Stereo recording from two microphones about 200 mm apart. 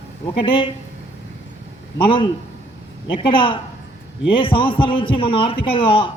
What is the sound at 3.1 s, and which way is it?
A man's voice, 25° left (ahead or behind).